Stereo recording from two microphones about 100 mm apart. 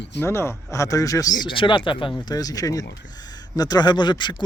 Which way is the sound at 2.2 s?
40° left (ahead or behind).